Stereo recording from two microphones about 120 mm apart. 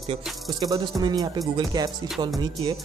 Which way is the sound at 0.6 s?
30° right (ahead or behind).